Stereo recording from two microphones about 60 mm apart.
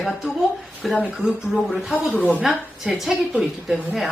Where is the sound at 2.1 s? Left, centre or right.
Left.